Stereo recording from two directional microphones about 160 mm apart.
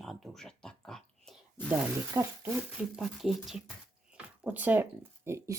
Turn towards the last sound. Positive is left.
turn(degrees=-15)  # may be behind; listen again after turning